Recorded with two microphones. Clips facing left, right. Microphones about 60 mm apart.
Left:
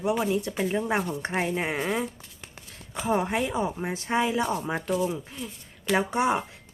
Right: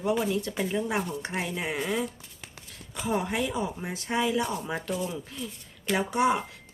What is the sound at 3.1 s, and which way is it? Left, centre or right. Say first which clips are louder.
Speech: left 3 dB; left.